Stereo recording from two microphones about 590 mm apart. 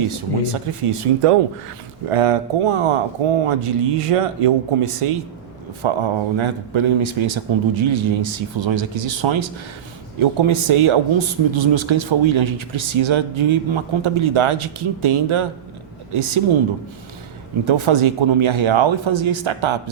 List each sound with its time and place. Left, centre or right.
0.1 s speech: right
17.7 s speech: right